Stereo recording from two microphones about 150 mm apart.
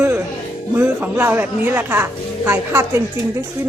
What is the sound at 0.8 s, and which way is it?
A woman's voice, 10° right (ahead or behind).